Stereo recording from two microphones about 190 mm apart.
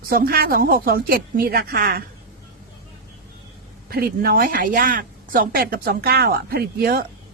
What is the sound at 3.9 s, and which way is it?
Speech, 50° right (ahead or behind).